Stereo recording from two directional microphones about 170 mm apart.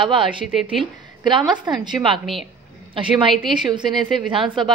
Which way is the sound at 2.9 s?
30° right (ahead or behind).